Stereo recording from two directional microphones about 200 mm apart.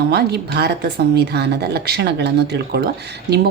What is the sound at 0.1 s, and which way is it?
Speech, 55° right (ahead or behind).